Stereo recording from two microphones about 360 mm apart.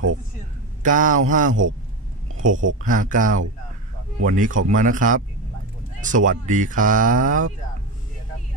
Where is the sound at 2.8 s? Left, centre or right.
Right.